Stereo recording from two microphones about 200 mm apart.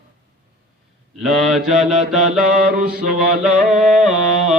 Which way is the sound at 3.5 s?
5° right (ahead or behind).